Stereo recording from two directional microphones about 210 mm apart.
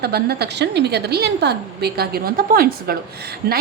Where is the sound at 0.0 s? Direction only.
50° right (ahead or behind).